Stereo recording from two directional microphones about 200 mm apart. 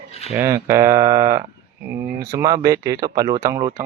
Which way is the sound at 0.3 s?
10° right (ahead or behind).